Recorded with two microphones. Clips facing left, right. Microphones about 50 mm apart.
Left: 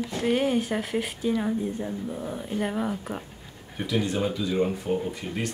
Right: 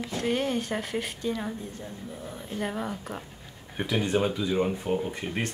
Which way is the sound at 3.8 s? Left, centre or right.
Right.